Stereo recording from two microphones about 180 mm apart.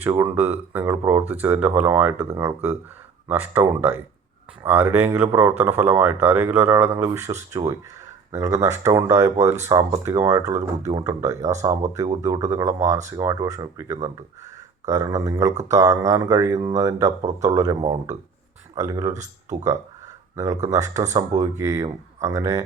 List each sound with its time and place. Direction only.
0.0 s speech: 15° right (ahead or behind)
3.2 s speech: 10° right (ahead or behind)
20.3 s speech: 20° right (ahead or behind)